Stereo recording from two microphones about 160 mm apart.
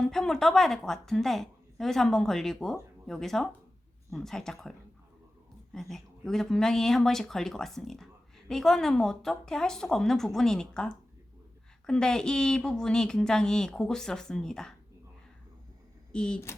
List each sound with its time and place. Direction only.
0.0 s a woman's voice: 5° left (ahead or behind)
5.7 s a woman's voice: 5° left (ahead or behind)
16.1 s a woman's voice: 5° left (ahead or behind)